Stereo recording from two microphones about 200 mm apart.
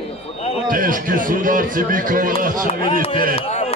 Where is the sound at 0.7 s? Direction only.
45° right (ahead or behind).